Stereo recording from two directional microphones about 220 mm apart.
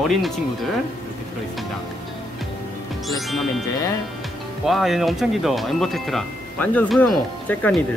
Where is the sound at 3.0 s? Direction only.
Centre (ahead or behind).